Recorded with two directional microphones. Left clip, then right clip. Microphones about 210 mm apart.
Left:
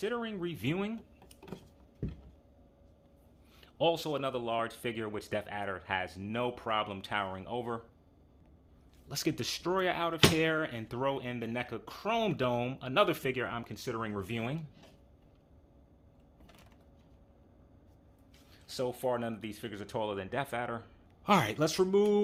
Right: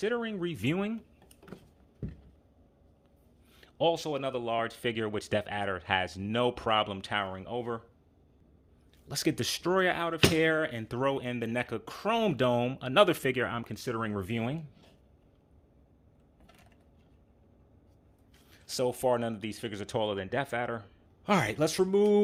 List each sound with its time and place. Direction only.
0.0 s speech: 20° right (ahead or behind)
3.6 s speech: 15° right (ahead or behind)
9.0 s speech: 25° right (ahead or behind)
18.5 s speech: 40° right (ahead or behind); by 22.2 s 20° right (ahead or behind)